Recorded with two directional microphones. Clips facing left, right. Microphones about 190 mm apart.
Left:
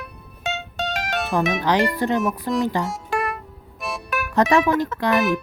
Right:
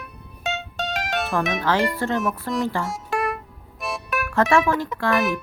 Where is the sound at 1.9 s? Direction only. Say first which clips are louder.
Left 2 dB; 15° left (ahead or behind).